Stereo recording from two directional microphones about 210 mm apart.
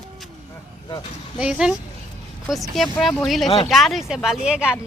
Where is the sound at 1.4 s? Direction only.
5° right (ahead or behind).